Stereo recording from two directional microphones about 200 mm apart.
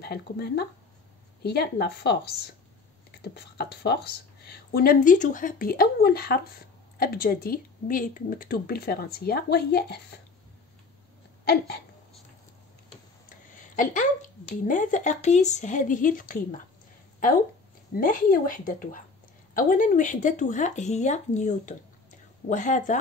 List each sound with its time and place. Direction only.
0.0 s speech: 50° left (ahead or behind)
11.4 s speech: 50° left (ahead or behind)
14.6 s speech: 40° left (ahead or behind)
17.9 s speech: 45° left (ahead or behind)